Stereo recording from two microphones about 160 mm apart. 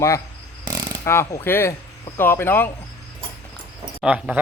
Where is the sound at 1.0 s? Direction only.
15° left (ahead or behind).